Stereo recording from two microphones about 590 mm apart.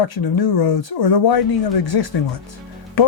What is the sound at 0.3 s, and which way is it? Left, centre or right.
Speech, left.